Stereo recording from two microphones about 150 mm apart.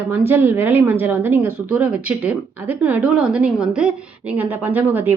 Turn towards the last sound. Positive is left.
turn(degrees=-10)  # may be behind; listen again after turning